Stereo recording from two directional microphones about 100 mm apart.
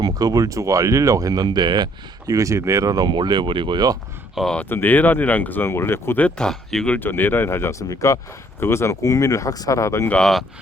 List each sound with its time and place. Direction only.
0.0 s speech: 40° right (ahead or behind)
4.4 s speech: 5° left (ahead or behind)
4.7 s speech: 20° left (ahead or behind)
10.1 s speech: 5° left (ahead or behind)